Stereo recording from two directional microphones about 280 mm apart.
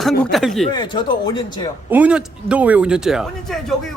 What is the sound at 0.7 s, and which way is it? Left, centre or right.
Speech, centre.